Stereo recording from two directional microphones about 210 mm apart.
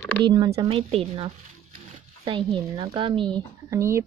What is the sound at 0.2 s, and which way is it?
A woman's voice, 20° right (ahead or behind).